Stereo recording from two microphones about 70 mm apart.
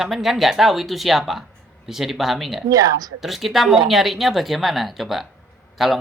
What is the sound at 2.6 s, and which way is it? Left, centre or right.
Speech, right.